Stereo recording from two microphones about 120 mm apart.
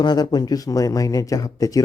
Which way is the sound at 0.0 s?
35° left (ahead or behind).